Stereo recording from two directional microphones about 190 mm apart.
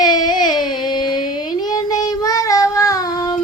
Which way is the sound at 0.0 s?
20° left (ahead or behind).